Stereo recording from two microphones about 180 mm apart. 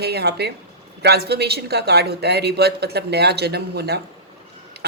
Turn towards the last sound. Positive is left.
turn(degrees=-65)  # may be behind; listen again after turning